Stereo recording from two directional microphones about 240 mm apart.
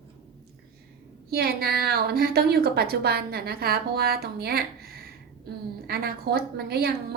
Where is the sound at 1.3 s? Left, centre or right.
Right.